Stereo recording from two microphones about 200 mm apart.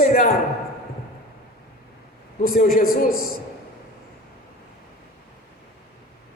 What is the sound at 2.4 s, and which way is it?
Speech, 45° left (ahead or behind).